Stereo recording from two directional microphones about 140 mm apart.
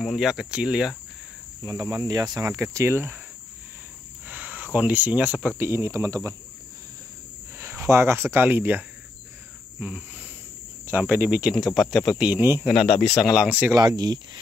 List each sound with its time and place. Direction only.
0.0 s speech: 5° right (ahead or behind)
1.6 s cricket: 25° right (ahead or behind)
4.3 s cricket: 10° right (ahead or behind)
4.7 s speech: 10° right (ahead or behind)
5.6 s cricket: 20° right (ahead or behind)
7.5 s speech: 15° right (ahead or behind)
9.8 s cricket: 10° right (ahead or behind)
10.9 s speech: 10° right (ahead or behind)
13.0 s speech: centre (ahead or behind)
13.7 s cricket: 30° right (ahead or behind)